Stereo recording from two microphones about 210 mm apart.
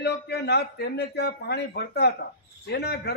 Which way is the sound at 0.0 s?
50° left (ahead or behind).